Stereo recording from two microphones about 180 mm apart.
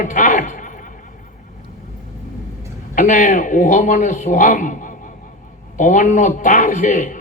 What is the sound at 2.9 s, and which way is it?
A man's voice, 45° left (ahead or behind).